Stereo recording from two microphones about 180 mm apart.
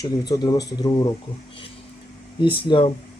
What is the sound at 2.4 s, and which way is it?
Speech, 30° left (ahead or behind).